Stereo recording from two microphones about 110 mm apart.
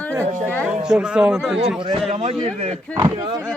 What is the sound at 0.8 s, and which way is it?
Speech, 5° right (ahead or behind).